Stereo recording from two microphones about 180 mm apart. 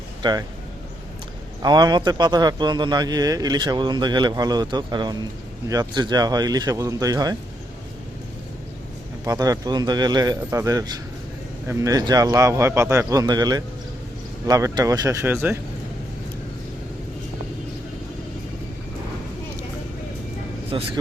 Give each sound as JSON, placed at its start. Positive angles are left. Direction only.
{"t": 0.2, "sound": "speech", "side_deg": -25}
{"t": 1.6, "sound": "speech", "side_deg": -25}
{"t": 9.2, "sound": "speech", "side_deg": -20}
{"t": 20.7, "sound": "speech", "side_deg": -25}